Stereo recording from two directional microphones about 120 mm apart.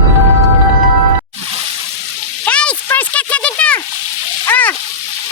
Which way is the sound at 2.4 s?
10° left (ahead or behind).